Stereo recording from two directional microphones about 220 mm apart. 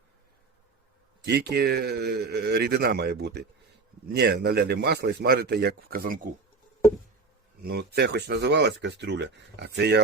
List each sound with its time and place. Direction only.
1.2 s speech: 50° right (ahead or behind)
7.6 s speech: 45° right (ahead or behind)